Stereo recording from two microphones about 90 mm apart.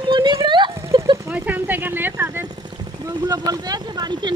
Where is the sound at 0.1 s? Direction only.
65° right (ahead or behind).